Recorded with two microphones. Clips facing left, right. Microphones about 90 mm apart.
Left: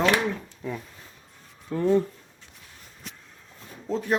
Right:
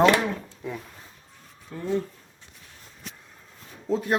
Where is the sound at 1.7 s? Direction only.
80° left.